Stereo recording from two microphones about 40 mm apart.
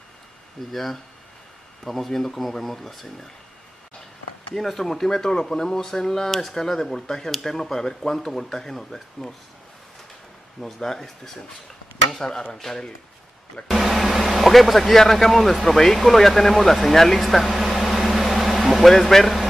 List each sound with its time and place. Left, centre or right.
0.7 s speech: centre
4.6 s speech: centre
10.6 s speech: centre
13.7 s speech: centre